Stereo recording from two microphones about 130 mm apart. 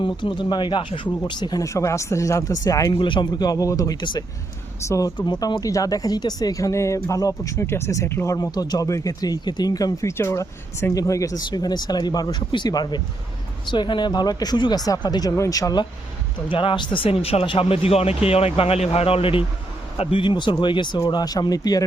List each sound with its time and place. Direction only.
0.0 s speech: 35° left (ahead or behind)